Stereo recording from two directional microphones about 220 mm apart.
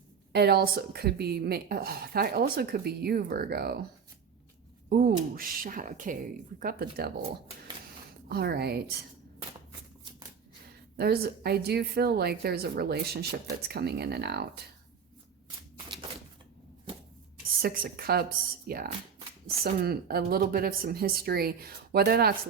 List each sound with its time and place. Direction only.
0.3 s a woman's voice: 45° right (ahead or behind)
4.9 s a woman's voice: 40° right (ahead or behind)
8.3 s a woman's voice: 45° right (ahead or behind)
10.9 s a woman's voice: 45° right (ahead or behind)
17.6 s a woman's voice: 45° right (ahead or behind)